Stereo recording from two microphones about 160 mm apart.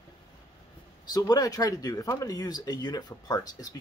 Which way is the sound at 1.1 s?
25° left (ahead or behind).